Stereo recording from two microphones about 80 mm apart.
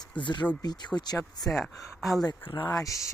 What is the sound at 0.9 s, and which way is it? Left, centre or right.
Speech, left.